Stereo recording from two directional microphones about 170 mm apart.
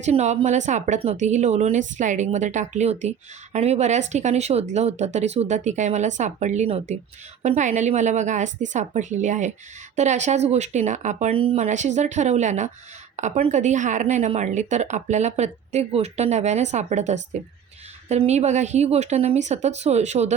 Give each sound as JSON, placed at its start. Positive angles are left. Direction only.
{"t": 0.0, "sound": "a woman's voice", "side_deg": -40}